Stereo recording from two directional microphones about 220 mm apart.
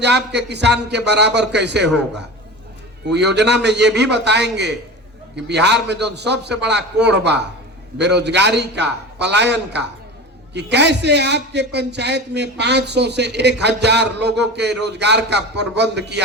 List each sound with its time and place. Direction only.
0.0 s a man's voice: 50° right (ahead or behind)
3.1 s a man's voice: 50° right (ahead or behind)